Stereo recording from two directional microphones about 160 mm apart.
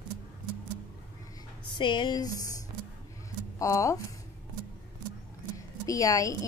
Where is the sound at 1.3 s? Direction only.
30° left (ahead or behind).